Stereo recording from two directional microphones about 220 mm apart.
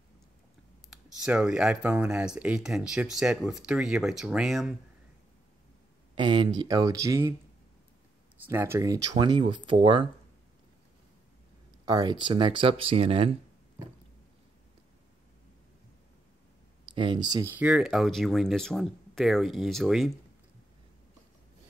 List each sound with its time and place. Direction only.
0.8 s speech: 5° right (ahead or behind)
6.1 s speech: 20° right (ahead or behind)
8.5 s speech: 10° right (ahead or behind)
11.8 s speech: 20° right (ahead or behind)
16.9 s speech: 20° right (ahead or behind)
17.6 s speech: 5° right (ahead or behind)